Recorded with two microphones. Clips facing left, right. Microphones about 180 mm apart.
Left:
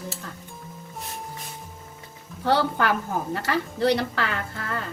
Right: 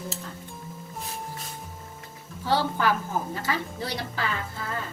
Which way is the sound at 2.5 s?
65° left (ahead or behind).